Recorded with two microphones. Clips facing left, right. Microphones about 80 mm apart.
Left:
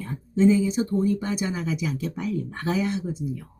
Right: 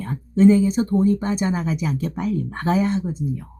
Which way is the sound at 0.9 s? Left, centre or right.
Right.